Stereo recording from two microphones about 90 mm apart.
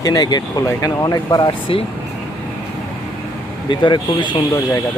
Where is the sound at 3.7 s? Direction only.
60° left (ahead or behind).